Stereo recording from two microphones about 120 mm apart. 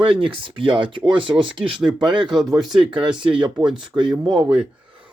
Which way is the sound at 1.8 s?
10° right (ahead or behind).